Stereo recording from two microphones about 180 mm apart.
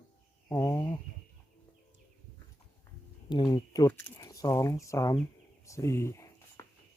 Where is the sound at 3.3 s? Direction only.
25° left (ahead or behind).